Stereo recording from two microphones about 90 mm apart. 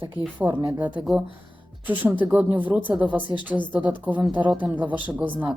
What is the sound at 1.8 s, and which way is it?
Speech, 20° right (ahead or behind).